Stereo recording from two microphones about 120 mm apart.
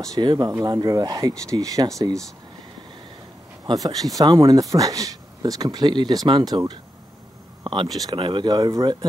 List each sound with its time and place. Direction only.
0.0 s speech: 35° right (ahead or behind)
3.6 s speech: 30° right (ahead or behind)